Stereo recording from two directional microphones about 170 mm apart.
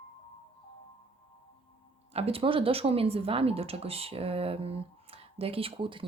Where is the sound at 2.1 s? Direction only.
35° right (ahead or behind).